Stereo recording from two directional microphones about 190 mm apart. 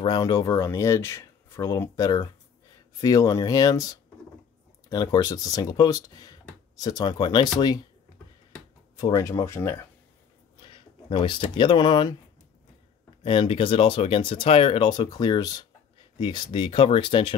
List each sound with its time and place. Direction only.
0.0 s speech: 20° left (ahead or behind)
8.9 s speech: 20° left (ahead or behind)
10.6 s speech: 25° left (ahead or behind)
13.2 s speech: 30° left (ahead or behind)